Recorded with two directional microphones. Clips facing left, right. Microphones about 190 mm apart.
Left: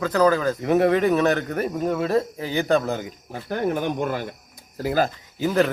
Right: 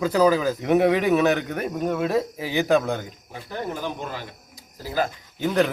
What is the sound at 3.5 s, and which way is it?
Speech, 60° left (ahead or behind).